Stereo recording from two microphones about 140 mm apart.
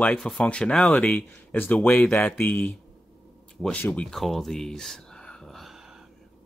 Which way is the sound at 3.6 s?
10° left (ahead or behind).